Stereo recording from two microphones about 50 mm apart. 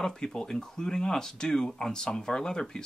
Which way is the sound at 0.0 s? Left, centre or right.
Centre.